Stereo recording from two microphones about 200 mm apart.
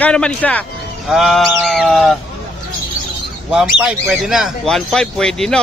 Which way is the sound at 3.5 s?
Centre (ahead or behind).